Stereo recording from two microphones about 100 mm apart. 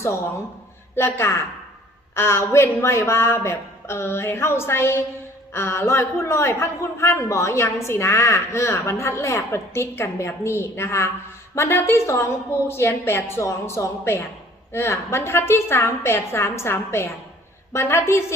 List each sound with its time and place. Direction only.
0.9 s a man's voice: 25° left (ahead or behind)